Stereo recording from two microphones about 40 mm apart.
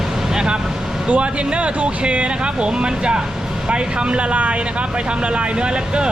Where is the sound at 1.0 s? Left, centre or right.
Right.